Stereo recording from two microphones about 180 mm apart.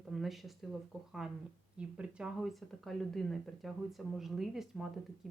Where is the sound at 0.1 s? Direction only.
Centre (ahead or behind).